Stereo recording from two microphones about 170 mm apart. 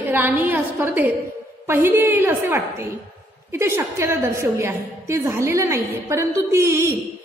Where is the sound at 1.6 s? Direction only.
15° right (ahead or behind).